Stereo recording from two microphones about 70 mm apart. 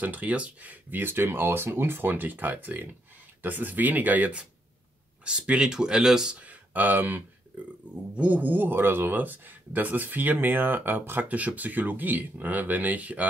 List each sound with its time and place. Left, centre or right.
0.0 s speech: right